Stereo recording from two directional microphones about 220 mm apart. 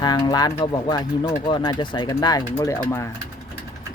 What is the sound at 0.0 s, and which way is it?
Speech, 20° left (ahead or behind).